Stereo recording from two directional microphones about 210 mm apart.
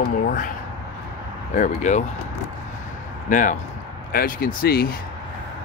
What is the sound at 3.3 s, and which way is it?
Speech, 40° left (ahead or behind).